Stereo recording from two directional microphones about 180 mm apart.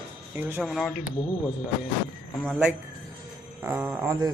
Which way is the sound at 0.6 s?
Centre (ahead or behind).